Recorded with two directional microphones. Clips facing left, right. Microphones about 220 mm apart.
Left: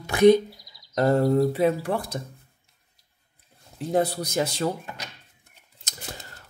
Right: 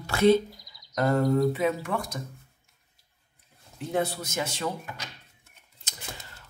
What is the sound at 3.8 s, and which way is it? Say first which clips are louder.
Speech: left 4 dB; 35° left (ahead or behind).